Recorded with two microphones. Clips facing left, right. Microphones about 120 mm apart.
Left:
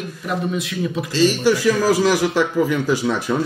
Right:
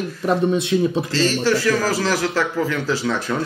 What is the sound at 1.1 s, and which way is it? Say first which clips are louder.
A man's voice: left 5 dB; 15° left (ahead or behind).